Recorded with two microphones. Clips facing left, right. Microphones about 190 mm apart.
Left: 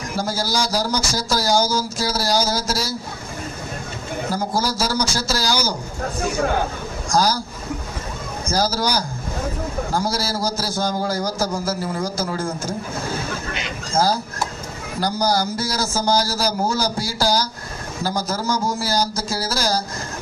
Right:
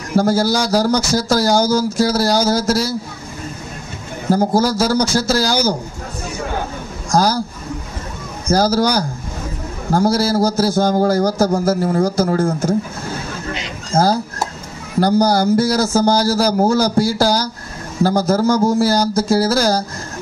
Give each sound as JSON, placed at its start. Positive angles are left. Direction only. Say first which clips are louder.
{"t": 0.1, "sound": "speech", "louder": "right 10 dB", "side_deg": -55}
{"t": 4.3, "sound": "speech", "louder": "right 9 dB", "side_deg": -55}
{"t": 7.1, "sound": "a man's voice", "louder": "right 4 dB", "side_deg": -55}
{"t": 8.5, "sound": "speech", "louder": "right 7 dB", "side_deg": -55}
{"t": 13.9, "sound": "a sound", "louder": "right 4 dB", "side_deg": -55}
{"t": 15.0, "sound": "speech", "louder": "right 7 dB", "side_deg": -55}